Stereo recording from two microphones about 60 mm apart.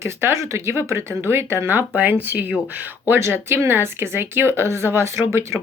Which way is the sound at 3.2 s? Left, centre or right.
Right.